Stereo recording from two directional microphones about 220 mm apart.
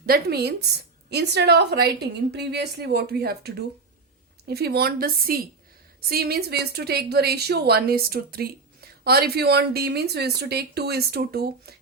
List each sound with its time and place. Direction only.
0.0 s a woman's voice: 45° right (ahead or behind)